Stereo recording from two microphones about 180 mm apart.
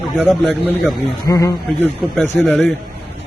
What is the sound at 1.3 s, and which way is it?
Speech, 20° left (ahead or behind).